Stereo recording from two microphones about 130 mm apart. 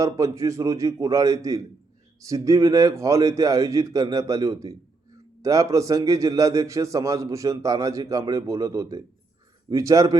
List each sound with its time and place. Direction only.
0.0 s a man's voice: 25° right (ahead or behind)